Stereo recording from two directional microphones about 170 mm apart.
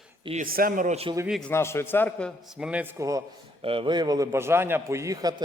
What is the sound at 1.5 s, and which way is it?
Speech, 15° left (ahead or behind).